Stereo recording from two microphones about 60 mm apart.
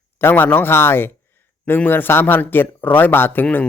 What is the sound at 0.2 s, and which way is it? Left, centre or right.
A man's voice, left.